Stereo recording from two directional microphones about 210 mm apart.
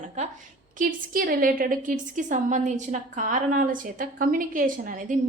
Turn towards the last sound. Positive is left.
turn(degrees=-40)  # may be behind; listen again after turning